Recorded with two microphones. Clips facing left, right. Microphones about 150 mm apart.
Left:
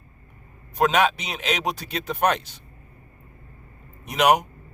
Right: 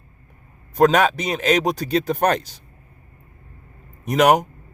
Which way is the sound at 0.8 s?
45° right (ahead or behind).